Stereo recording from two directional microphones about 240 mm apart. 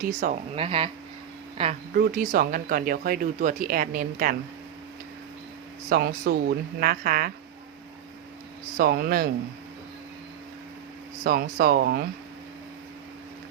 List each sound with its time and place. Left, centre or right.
0.0 s speech: right
0.5 s speech: right
2.0 s speech: right
5.9 s speech: right
8.8 s speech: right
11.2 s speech: right